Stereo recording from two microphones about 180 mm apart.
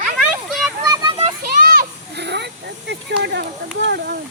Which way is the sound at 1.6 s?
55° right (ahead or behind).